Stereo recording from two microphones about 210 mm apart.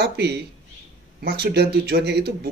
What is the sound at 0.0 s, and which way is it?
Speech, 50° right (ahead or behind).